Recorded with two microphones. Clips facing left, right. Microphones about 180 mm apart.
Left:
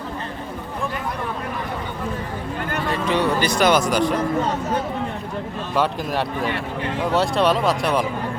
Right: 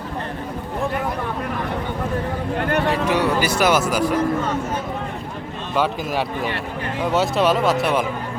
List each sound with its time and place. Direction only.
2.6 s a sound: 65° right (ahead or behind)
2.9 s speech: 10° right (ahead or behind)
5.7 s speech: centre (ahead or behind)